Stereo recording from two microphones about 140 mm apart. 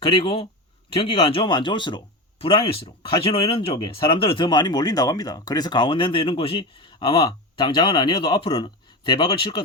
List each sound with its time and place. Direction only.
0.0 s speech: 40° left (ahead or behind)